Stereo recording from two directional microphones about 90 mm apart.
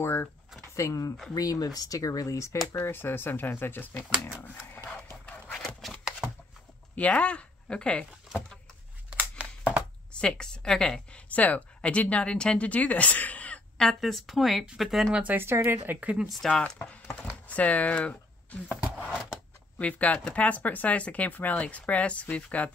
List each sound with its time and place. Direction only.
0.0 s speech: 25° left (ahead or behind)
0.7 s speech: 35° left (ahead or behind)
2.8 s speech: 25° left (ahead or behind)
5.2 s a sound: 20° left (ahead or behind)
5.6 s a sound: 5° left (ahead or behind)
7.0 s speech: 15° left (ahead or behind)
10.1 s speech: 10° left (ahead or behind)
15.1 s speech: 20° right (ahead or behind)
16.0 s speech: 15° right (ahead or behind)
16.3 s speech: 5° left (ahead or behind)
18.9 s a sound: 10° left (ahead or behind)
19.8 s speech: 15° left (ahead or behind)